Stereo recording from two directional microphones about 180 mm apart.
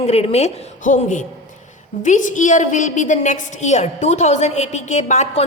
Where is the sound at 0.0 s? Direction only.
35° left (ahead or behind).